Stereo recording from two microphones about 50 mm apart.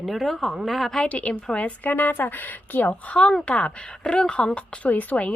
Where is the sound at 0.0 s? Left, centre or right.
Centre.